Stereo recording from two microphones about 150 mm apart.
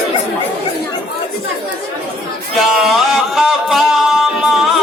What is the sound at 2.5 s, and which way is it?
Music, centre (ahead or behind).